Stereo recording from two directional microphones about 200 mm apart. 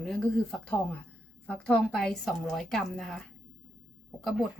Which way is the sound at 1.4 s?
5° left (ahead or behind).